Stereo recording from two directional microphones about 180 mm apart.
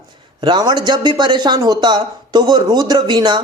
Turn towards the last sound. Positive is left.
turn(degrees=-25)  # may be behind; listen again after turning